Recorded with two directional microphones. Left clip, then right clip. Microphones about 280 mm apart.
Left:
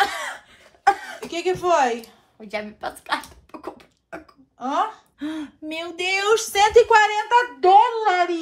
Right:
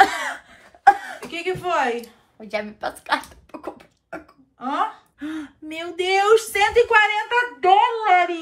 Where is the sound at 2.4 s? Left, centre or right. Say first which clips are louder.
Right 2 dB; centre.